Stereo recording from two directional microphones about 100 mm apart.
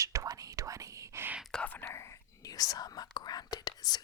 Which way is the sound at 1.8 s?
25° left (ahead or behind).